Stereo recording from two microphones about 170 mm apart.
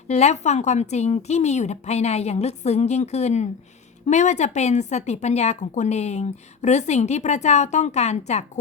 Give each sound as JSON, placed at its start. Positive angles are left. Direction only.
{"t": 0.1, "sound": "a woman's voice", "side_deg": 40}